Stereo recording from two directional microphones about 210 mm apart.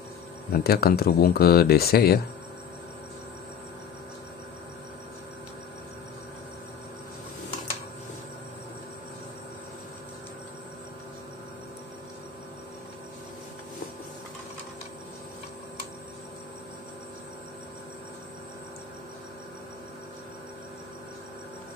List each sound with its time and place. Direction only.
0.5 s speech: 45° left (ahead or behind)